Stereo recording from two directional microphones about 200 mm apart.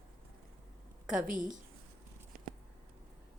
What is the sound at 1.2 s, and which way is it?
Speech, 40° right (ahead or behind).